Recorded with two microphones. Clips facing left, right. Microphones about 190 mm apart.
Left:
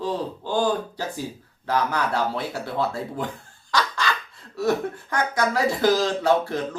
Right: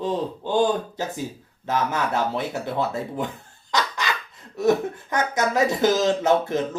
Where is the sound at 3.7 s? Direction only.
20° right (ahead or behind).